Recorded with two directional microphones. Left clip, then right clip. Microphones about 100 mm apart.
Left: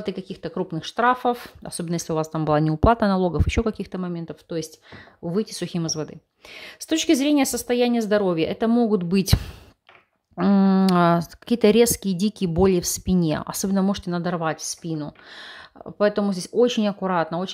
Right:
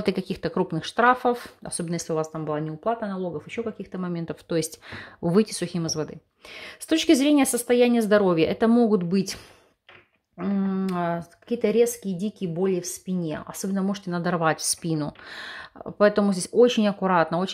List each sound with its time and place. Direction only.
0.0 s speech: 15° right (ahead or behind); by 2.4 s 25° left (ahead or behind)
2.4 s speech: 45° left (ahead or behind)
2.7 s speech: 70° left (ahead or behind)
4.1 s speech: centre (ahead or behind)
4.5 s speech: 15° right (ahead or behind)
5.7 s speech: 15° left (ahead or behind)
9.1 s speech: 35° left (ahead or behind)
10.6 s speech: 55° left (ahead or behind)
11.4 s speech: 40° left (ahead or behind)
13.5 s speech: 35° left (ahead or behind)
14.2 s speech: centre (ahead or behind)